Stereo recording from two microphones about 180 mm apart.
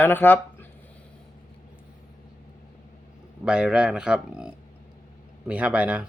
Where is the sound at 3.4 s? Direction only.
5° right (ahead or behind).